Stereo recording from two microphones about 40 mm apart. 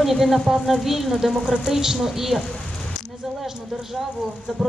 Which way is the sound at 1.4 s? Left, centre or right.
Right.